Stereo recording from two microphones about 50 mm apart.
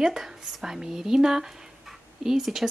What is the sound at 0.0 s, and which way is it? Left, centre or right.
Speech, centre.